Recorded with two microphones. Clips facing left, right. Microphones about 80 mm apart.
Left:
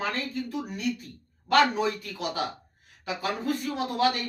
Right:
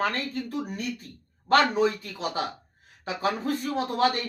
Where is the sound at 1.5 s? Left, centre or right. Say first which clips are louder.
Right 1 dB; right.